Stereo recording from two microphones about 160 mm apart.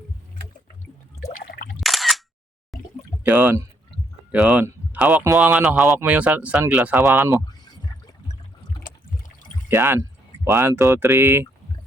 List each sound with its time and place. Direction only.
1.8 s single-lens reflex camera: centre (ahead or behind)
2.7 s a sound: centre (ahead or behind)
3.2 s speech: 10° right (ahead or behind)
9.6 s speech: 15° right (ahead or behind)